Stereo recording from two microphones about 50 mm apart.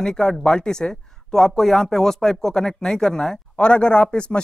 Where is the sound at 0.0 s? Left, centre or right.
Centre.